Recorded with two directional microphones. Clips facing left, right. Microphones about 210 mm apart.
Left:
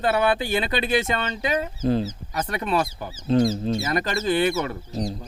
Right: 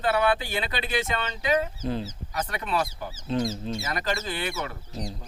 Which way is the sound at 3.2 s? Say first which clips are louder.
Left 8 dB; 30° left (ahead or behind).